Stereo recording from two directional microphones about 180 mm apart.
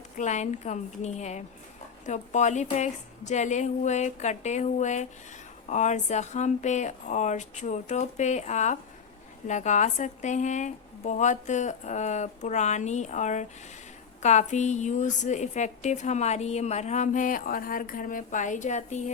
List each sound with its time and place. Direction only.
0.2 s a woman's voice: 40° left (ahead or behind)